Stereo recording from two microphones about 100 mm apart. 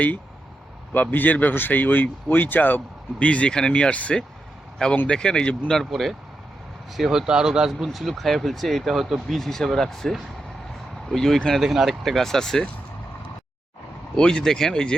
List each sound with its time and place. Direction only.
0.9 s speech: 15° left (ahead or behind)
14.2 s speech: 5° left (ahead or behind)